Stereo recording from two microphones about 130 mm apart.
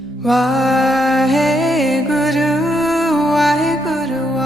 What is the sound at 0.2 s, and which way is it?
Music, centre (ahead or behind).